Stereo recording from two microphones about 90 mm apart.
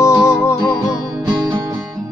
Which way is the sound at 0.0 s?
30° left (ahead or behind).